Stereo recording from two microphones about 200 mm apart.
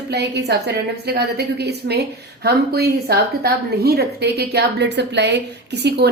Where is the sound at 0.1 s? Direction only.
55° right (ahead or behind).